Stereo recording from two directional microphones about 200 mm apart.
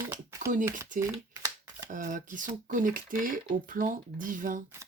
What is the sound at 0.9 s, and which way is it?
Shuffling cards, 15° right (ahead or behind).